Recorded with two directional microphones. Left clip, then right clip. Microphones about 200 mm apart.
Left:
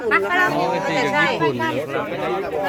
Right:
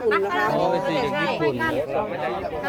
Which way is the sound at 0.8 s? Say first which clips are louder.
Left 5 dB; 35° left (ahead or behind).